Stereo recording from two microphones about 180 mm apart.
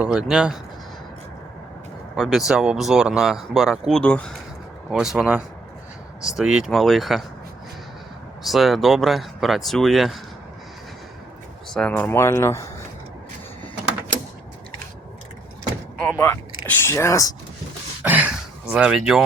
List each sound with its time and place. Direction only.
0.0 s speech: 5° right (ahead or behind)
2.1 s speech: centre (ahead or behind)
8.4 s speech: centre (ahead or behind)
11.7 s speech: 5° left (ahead or behind)
16.0 s speech: 10° left (ahead or behind)
18.0 s a sound: 10° right (ahead or behind)